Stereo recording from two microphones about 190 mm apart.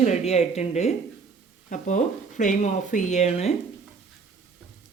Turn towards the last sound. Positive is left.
turn(degrees=35)  # may be behind; listen again after turning